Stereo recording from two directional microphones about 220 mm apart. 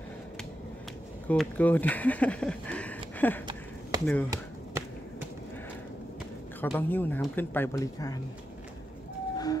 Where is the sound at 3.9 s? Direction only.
20° right (ahead or behind).